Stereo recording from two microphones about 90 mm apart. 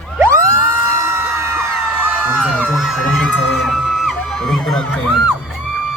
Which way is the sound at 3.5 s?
Centre (ahead or behind).